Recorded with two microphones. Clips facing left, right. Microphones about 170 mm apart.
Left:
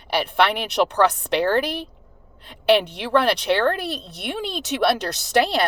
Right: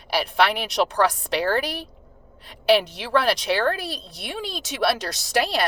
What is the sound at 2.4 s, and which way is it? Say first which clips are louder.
Speech: left 1 dB; 60° left (ahead or behind).